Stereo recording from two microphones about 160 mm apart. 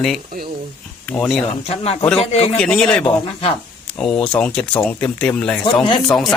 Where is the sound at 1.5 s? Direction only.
40° left (ahead or behind).